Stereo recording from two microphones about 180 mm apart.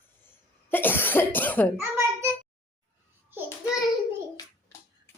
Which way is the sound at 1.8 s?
15° right (ahead or behind).